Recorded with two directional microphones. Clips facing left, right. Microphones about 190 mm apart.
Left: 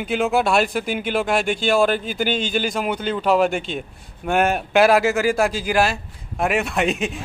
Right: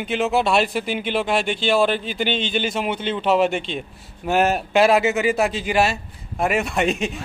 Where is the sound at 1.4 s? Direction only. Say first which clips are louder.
Left 1 dB; 45° left (ahead or behind).